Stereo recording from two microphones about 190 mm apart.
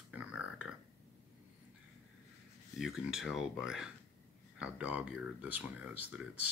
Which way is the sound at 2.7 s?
Centre (ahead or behind).